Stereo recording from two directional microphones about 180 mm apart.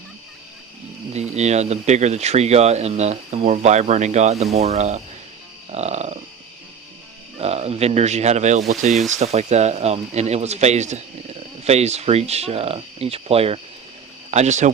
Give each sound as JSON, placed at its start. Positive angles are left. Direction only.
{"t": 1.1, "sound": "speech", "side_deg": -40}
{"t": 5.7, "sound": "music", "side_deg": -35}
{"t": 7.3, "sound": "speech", "side_deg": -35}